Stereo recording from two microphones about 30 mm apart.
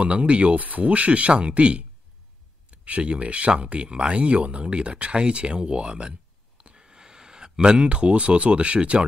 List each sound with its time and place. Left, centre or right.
0.0 s speech: right
0.6 s speech: right
6.8 s speech: right